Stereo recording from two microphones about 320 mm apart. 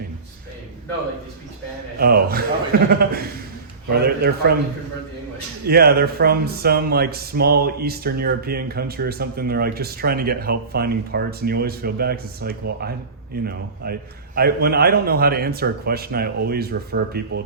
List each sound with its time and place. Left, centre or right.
2.0 s speech: right
5.6 s speech: right